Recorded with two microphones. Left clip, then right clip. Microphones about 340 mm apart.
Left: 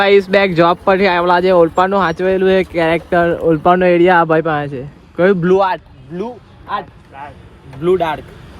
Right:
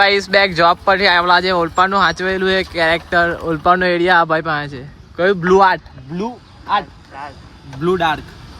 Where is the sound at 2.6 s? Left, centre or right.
Left.